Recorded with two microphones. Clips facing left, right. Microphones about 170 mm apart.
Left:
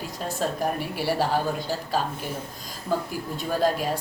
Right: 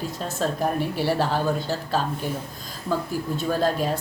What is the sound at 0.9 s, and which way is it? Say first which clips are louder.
Speech: right 2 dB; 10° left (ahead or behind).